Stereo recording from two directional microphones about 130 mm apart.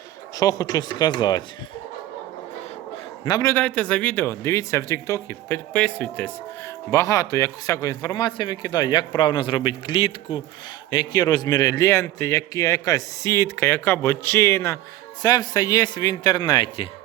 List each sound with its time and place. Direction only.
0.3 s speech: 30° left (ahead or behind)
3.2 s speech: 35° left (ahead or behind)
3.5 s speech: 10° left (ahead or behind)
6.9 s a man's voice: 25° left (ahead or behind); by 16.9 s 40° left (ahead or behind)